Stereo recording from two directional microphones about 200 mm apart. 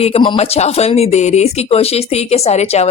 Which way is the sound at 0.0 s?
25° left (ahead or behind).